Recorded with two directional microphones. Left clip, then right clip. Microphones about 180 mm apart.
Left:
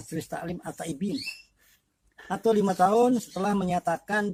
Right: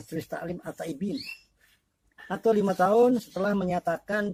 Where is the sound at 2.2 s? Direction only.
Centre (ahead or behind).